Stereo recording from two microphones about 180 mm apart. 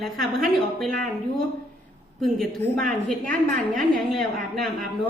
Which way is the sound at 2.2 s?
Centre (ahead or behind).